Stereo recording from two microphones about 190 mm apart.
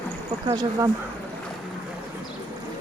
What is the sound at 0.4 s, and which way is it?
Speech, 20° right (ahead or behind).